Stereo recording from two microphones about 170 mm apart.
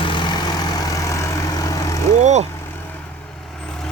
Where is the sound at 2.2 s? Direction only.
45° right (ahead or behind).